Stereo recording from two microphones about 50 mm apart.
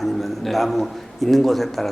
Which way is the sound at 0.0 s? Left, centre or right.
Centre.